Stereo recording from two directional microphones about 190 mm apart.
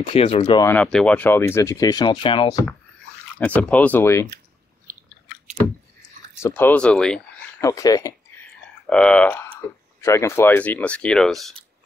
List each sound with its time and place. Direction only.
0.0 s speech: 30° left (ahead or behind)
0.6 s speech: 15° left (ahead or behind)
3.3 s speech: 10° left (ahead or behind)
4.9 s chewing: 50° right (ahead or behind)
6.4 s speech: 10° left (ahead or behind)
7.6 s speech: 20° left (ahead or behind)
8.8 s speech: 5° left (ahead or behind)